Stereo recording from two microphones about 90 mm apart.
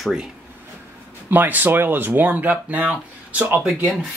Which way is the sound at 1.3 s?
20° right (ahead or behind).